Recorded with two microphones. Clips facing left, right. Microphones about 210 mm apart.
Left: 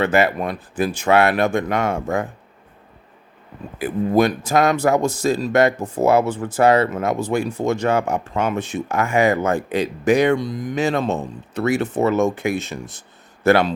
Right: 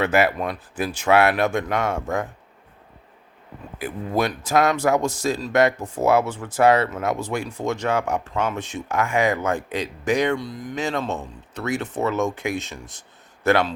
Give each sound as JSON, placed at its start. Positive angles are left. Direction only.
{"t": 0.0, "sound": "a man's voice", "side_deg": -5}
{"t": 3.8, "sound": "a man's voice", "side_deg": 0}